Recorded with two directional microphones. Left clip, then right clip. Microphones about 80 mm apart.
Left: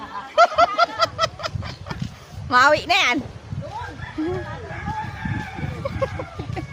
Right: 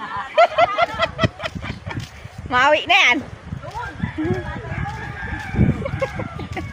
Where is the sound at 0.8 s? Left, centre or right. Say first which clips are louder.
Even; left.